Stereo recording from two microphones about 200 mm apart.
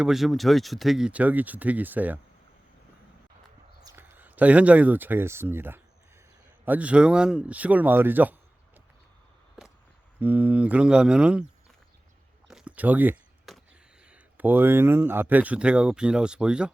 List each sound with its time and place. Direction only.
0.0 s speech: centre (ahead or behind)
3.8 s speech: 10° right (ahead or behind)
10.2 s speech: 10° right (ahead or behind)
12.5 s a sound: 5° right (ahead or behind)
14.1 s speech: 10° right (ahead or behind)